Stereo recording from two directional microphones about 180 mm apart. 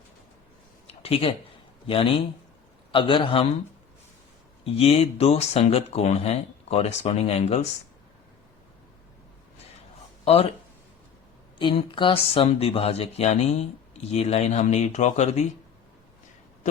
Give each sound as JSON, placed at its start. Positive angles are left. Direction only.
{"t": 0.9, "sound": "a sound", "side_deg": 30}
{"t": 1.9, "sound": "a man's voice", "side_deg": 30}
{"t": 4.6, "sound": "speech", "side_deg": 35}
{"t": 10.2, "sound": "speech", "side_deg": 35}
{"t": 11.5, "sound": "speech", "side_deg": 30}